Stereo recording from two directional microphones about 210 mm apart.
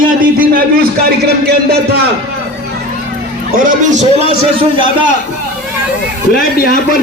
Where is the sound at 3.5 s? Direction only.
35° right (ahead or behind).